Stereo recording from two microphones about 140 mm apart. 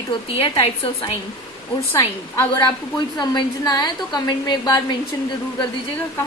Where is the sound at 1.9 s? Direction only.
15° left (ahead or behind).